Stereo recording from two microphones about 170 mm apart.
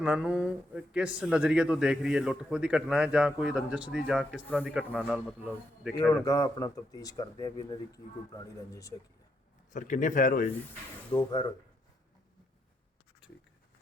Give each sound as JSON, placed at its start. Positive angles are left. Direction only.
{"t": 0.0, "sound": "speech", "side_deg": -5}
{"t": 6.1, "sound": "speech", "side_deg": 15}
{"t": 9.7, "sound": "speech", "side_deg": 50}
{"t": 11.2, "sound": "speech", "side_deg": 25}